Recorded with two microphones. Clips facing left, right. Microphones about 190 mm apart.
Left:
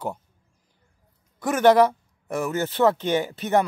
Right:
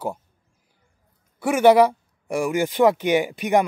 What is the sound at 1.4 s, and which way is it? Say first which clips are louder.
Speech: right 2 dB; 10° right (ahead or behind).